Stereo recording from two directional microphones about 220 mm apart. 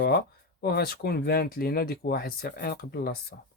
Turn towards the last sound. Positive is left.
turn(degrees=45)  # may be behind; listen again after turning